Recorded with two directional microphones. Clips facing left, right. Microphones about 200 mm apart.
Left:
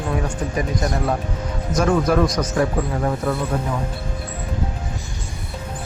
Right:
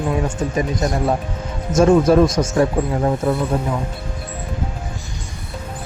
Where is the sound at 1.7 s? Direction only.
25° right (ahead or behind).